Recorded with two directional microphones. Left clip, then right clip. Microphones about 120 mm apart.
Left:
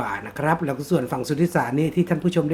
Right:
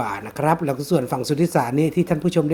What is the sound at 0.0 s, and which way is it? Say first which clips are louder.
Speech: right 2 dB; 50° right (ahead or behind).